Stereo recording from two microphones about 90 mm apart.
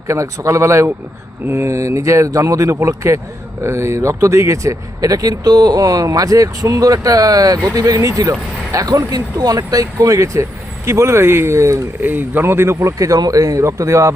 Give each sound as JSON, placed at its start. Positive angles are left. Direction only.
{"t": 0.1, "sound": "speech", "side_deg": -35}
{"t": 12.0, "sound": "speech", "side_deg": -20}